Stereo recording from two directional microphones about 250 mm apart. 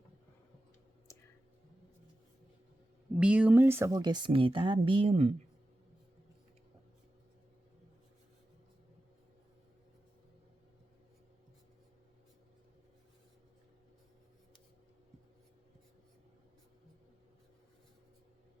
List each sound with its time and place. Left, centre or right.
3.2 s speech: centre; by 5.3 s right